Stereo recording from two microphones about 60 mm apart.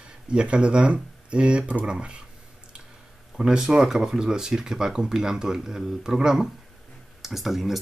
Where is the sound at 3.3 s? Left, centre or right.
Centre.